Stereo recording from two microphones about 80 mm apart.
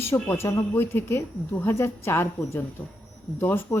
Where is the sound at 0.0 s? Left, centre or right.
Left.